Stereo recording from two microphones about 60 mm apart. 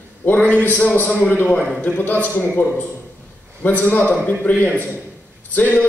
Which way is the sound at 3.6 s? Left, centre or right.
Left.